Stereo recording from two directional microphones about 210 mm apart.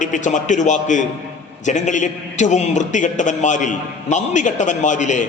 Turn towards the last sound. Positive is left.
turn(degrees=35)  # may be behind; listen again after turning